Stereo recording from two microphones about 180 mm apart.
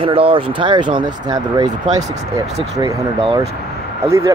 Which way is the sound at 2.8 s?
25° right (ahead or behind).